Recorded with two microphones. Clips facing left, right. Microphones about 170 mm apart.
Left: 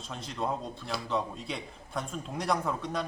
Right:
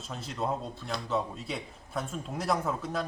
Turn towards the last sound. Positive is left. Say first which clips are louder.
# even
turn(degrees=-5)  # may be behind; listen again after turning